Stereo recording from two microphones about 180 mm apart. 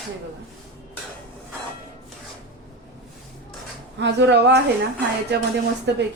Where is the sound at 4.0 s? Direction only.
70° right (ahead or behind).